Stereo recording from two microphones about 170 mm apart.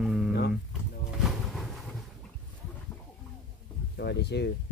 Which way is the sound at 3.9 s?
80° left.